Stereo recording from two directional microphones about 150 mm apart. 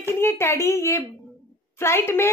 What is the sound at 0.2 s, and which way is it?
A child's voice, 15° left (ahead or behind).